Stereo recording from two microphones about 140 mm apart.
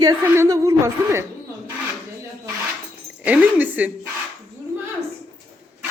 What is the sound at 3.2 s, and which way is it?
Speech, 10° right (ahead or behind).